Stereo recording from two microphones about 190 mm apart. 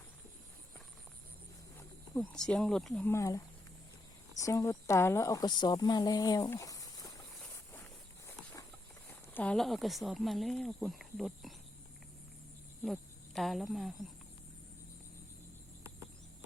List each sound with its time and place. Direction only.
2.1 s speech: 5° left (ahead or behind)
9.0 s speech: 10° left (ahead or behind)
12.8 s speech: centre (ahead or behind)